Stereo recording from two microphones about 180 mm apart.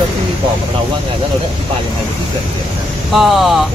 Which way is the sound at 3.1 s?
Centre (ahead or behind).